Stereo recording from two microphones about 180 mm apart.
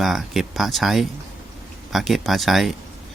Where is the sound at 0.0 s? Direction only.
Centre (ahead or behind).